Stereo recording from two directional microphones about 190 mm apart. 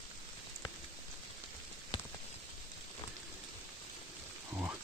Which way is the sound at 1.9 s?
25° left (ahead or behind).